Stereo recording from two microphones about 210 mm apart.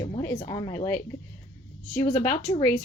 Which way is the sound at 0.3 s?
20° left (ahead or behind).